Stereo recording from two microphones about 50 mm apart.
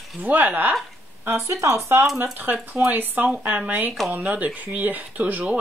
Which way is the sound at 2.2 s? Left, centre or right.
Right.